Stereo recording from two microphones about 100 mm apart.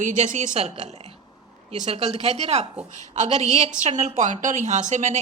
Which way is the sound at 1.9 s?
90° right.